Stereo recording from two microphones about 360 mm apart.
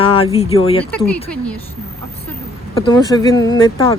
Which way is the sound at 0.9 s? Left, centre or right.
Centre.